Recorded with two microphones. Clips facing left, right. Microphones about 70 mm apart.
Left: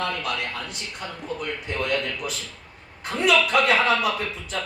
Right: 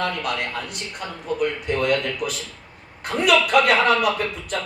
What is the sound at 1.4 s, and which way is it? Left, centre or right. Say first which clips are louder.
A man's voice: right 7 dB; right.